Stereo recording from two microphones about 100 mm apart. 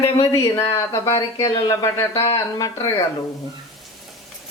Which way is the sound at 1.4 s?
40° left (ahead or behind).